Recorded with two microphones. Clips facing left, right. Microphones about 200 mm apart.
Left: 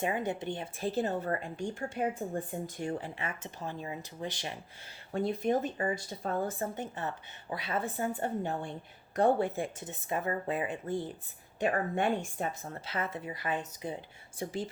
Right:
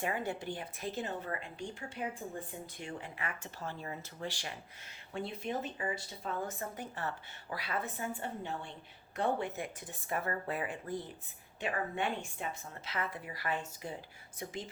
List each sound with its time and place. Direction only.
0.0 s speech: 20° left (ahead or behind); by 3.1 s 45° left (ahead or behind)
3.2 s speech: 20° left (ahead or behind)
5.1 s speech: 45° left (ahead or behind)
6.6 s speech: 20° left (ahead or behind); by 9.5 s 40° left (ahead or behind)
9.5 s speech: 25° left (ahead or behind)
11.6 s speech: 45° left (ahead or behind); by 14.6 s 30° left (ahead or behind)